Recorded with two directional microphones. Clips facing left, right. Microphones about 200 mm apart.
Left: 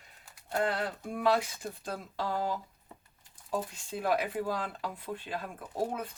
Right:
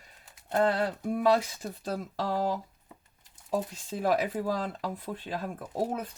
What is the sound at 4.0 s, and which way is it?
Speech, 45° right (ahead or behind).